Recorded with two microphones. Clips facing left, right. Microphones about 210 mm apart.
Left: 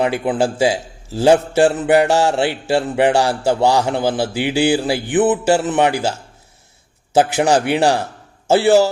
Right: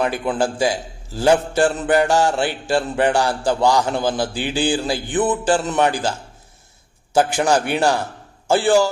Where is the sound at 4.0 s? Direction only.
5° left (ahead or behind).